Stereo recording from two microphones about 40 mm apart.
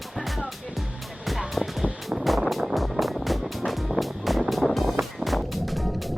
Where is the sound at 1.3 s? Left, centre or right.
Centre.